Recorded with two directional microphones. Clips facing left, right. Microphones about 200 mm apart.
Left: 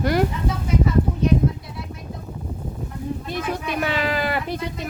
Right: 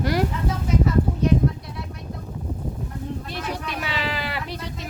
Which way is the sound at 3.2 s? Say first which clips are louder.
Left 4 dB; 50° left (ahead or behind).